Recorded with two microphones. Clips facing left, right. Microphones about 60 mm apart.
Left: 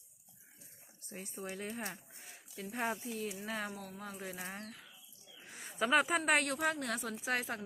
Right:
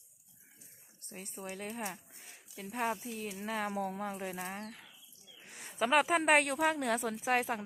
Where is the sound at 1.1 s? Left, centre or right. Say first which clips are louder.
Even; centre.